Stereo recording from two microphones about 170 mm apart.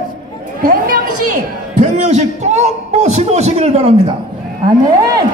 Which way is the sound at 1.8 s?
45° right (ahead or behind).